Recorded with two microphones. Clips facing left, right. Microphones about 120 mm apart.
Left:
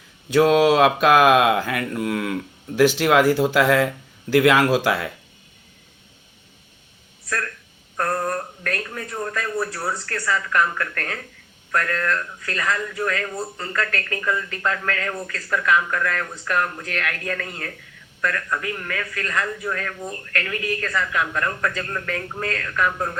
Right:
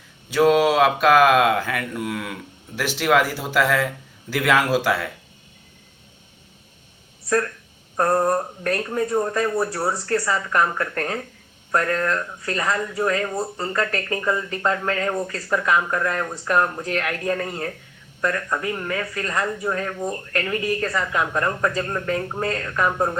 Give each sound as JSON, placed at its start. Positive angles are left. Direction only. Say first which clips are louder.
{"t": 0.3, "sound": "speech", "louder": "left 1 dB", "side_deg": -5}
{"t": 7.3, "sound": "a man's voice", "louder": "right 7 dB", "side_deg": -25}